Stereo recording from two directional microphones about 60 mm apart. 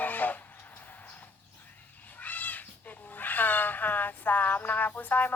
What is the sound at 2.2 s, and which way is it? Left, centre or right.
Cat, left.